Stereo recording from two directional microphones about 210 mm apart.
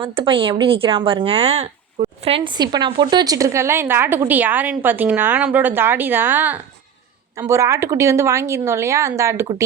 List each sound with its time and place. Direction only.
0.0 s speech: 25° right (ahead or behind)